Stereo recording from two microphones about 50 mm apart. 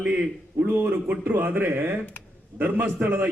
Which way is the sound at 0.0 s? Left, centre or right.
Right.